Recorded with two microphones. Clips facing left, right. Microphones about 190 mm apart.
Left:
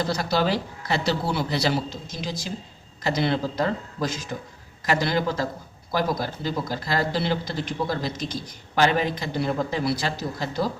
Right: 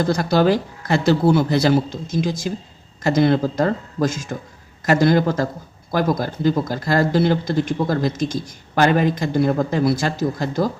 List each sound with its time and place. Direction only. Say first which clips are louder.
0.0 s speech: right 7 dB; 50° right (ahead or behind)